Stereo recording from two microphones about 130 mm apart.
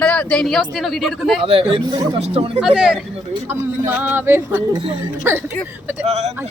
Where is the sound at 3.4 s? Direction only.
15° right (ahead or behind).